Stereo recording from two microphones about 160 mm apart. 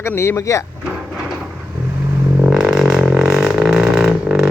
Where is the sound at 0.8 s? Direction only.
5° right (ahead or behind).